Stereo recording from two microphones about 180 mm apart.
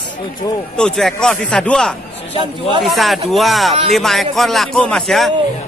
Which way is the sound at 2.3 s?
30° left (ahead or behind).